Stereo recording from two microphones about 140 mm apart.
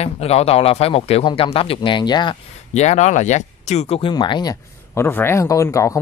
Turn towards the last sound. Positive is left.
turn(degrees=20)  # may be behind; listen again after turning